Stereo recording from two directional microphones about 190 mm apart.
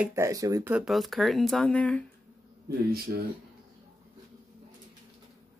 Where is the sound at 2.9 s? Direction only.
55° right (ahead or behind).